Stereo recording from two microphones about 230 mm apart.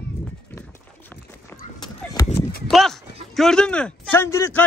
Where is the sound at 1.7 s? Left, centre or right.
Centre.